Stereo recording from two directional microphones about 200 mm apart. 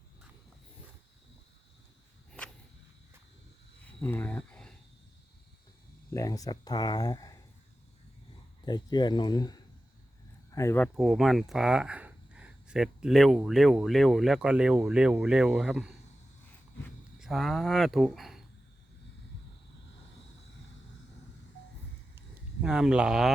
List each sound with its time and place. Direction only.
2.4 s cricket: 5° left (ahead or behind)
4.0 s a sound: 10° left (ahead or behind)
6.1 s speech: 15° left (ahead or behind)
8.6 s speech: 20° left (ahead or behind)
10.9 s speech: centre (ahead or behind)
17.2 s speech: centre (ahead or behind)
22.6 s speech: 5° right (ahead or behind)